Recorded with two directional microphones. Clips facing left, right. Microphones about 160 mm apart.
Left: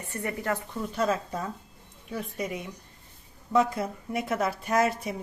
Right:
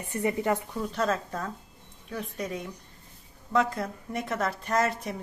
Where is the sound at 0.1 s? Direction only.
20° right (ahead or behind).